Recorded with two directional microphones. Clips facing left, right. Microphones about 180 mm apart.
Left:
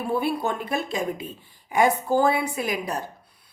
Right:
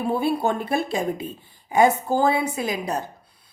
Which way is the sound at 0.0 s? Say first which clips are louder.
Right 3 dB; 30° right (ahead or behind).